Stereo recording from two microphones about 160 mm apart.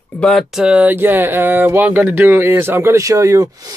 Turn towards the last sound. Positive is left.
turn(degrees=-20)  # may be behind; listen again after turning